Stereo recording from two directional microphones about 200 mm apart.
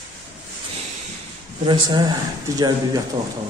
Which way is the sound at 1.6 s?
20° right (ahead or behind).